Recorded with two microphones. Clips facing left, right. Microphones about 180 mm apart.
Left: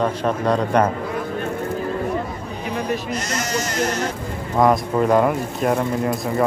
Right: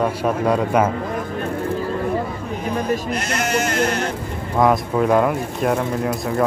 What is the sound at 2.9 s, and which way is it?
Speech, 60° right (ahead or behind).